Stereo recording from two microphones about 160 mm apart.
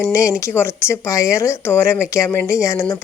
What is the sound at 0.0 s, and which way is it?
Speech, 20° left (ahead or behind).